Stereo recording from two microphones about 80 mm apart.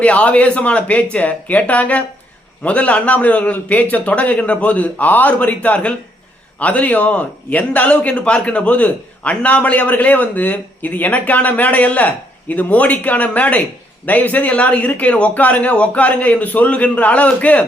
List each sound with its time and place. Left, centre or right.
0.0 s a man's voice: centre